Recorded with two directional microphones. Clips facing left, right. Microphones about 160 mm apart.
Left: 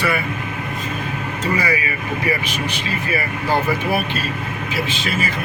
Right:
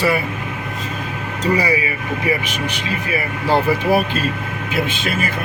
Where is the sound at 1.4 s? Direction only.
35° right (ahead or behind).